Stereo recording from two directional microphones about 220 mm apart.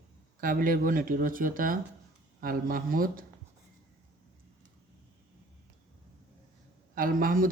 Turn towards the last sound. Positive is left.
turn(degrees=-40)  # may be behind; listen again after turning